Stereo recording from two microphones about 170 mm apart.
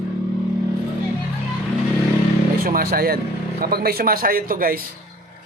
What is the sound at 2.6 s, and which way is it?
A man's voice, 60° right (ahead or behind).